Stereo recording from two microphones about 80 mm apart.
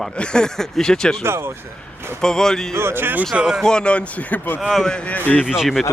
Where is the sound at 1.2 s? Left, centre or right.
Right.